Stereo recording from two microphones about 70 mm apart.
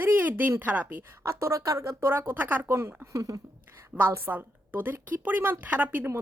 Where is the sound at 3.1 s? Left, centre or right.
Right.